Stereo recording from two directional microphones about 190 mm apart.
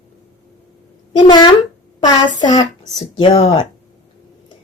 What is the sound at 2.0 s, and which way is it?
A woman's voice, 20° left (ahead or behind).